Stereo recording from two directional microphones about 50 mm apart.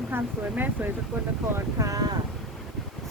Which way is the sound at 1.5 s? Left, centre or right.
Right.